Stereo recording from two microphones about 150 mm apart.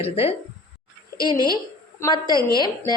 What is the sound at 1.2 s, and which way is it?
A woman's voice, 30° left (ahead or behind).